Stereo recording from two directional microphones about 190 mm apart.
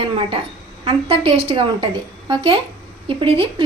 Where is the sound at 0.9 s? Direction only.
30° right (ahead or behind).